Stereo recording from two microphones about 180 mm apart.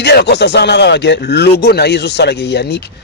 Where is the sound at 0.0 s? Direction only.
70° left (ahead or behind).